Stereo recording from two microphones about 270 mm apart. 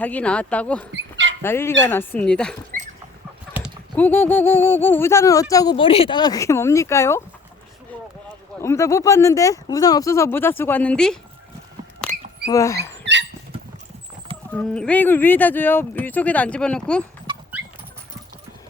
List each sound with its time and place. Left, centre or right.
0.0 s speech: centre
0.9 s dog: right
1.4 s speech: centre
3.6 s clip-clop: centre
3.9 s speech: centre
8.6 s speech: centre
12.5 s speech: centre
12.9 s dog: right
14.5 s speech: centre